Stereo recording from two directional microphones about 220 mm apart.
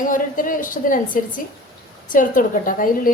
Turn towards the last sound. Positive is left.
turn(degrees=40)  # may be behind; listen again after turning